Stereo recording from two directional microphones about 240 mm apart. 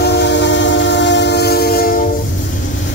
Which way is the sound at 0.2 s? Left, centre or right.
Left.